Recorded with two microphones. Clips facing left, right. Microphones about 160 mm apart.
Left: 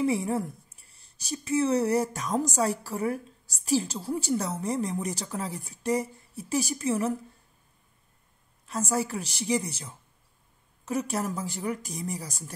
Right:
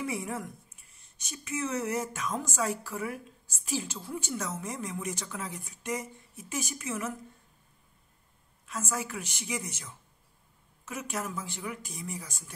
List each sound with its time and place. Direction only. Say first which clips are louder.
0.0 s speech: left 8 dB; 30° left (ahead or behind)
8.6 s speech: left 6 dB; 35° left (ahead or behind)